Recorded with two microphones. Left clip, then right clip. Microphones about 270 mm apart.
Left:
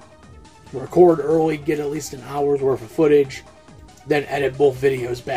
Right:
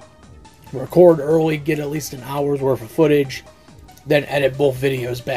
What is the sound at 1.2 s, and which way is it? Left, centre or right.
Speech, right.